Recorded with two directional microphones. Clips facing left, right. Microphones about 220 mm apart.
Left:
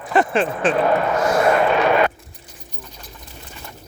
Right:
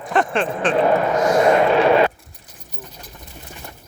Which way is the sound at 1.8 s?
30° right (ahead or behind).